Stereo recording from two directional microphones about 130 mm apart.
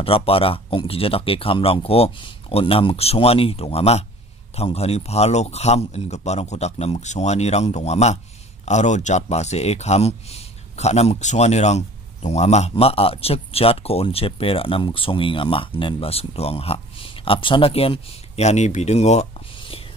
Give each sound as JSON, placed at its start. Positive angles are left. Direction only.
{"t": 0.0, "sound": "a man's voice", "side_deg": 45}